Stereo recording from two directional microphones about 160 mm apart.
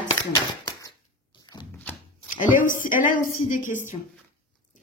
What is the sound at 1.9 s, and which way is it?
Shuffling cards, 10° left (ahead or behind).